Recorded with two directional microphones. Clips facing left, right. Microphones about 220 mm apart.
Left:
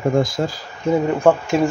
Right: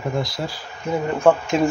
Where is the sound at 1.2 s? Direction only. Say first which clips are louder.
Left 1 dB; 5° left (ahead or behind).